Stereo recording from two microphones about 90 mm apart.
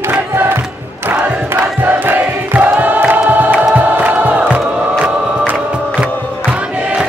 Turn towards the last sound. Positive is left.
turn(degrees=-15)  # may be behind; listen again after turning